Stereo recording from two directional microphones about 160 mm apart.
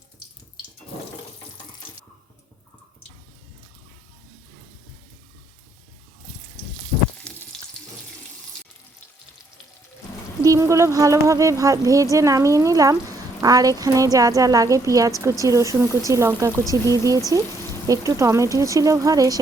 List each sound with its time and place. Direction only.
7.3 s frying: 5° left (ahead or behind)
10.4 s speech: 20° right (ahead or behind)